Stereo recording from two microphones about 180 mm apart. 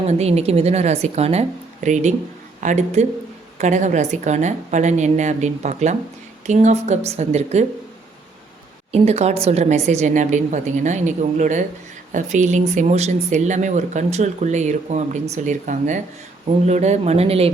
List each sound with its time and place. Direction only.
0.0 s speech: 35° right (ahead or behind)
8.9 s speech: 35° right (ahead or behind)